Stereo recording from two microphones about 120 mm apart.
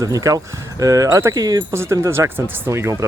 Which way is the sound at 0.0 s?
30° right (ahead or behind).